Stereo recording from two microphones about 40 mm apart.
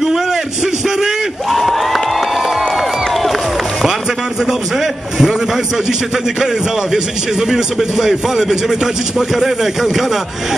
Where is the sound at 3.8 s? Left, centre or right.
Centre.